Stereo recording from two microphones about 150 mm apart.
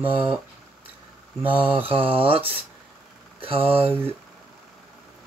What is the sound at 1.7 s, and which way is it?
Speech, 40° right (ahead or behind).